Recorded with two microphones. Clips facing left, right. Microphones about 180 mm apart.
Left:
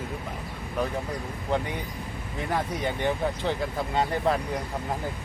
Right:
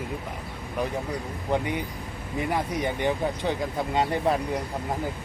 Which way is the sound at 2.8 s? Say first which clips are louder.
Right 1 dB; 15° right (ahead or behind).